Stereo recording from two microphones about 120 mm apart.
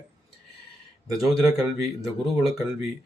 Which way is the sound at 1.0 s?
30° right (ahead or behind).